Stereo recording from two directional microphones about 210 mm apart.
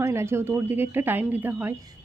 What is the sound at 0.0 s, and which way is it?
Speech, 15° right (ahead or behind).